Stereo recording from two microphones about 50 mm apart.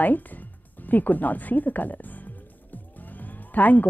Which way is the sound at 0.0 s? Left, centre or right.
Left.